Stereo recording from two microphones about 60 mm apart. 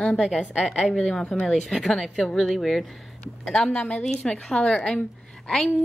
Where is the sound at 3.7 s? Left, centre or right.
Centre.